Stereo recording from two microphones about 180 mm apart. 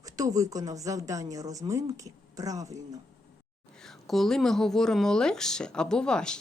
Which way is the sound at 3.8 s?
Centre (ahead or behind).